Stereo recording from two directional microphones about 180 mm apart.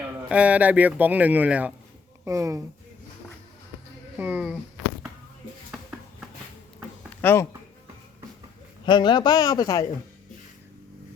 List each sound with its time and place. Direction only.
0.3 s speech: 5° right (ahead or behind)
4.2 s speech: 5° right (ahead or behind)
7.2 s speech: 10° left (ahead or behind)
8.9 s speech: 25° left (ahead or behind)